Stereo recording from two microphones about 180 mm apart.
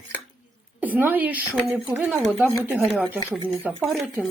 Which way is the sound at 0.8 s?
10° right (ahead or behind).